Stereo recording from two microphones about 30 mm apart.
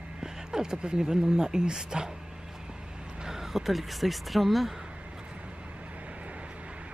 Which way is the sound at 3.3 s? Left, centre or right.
Centre.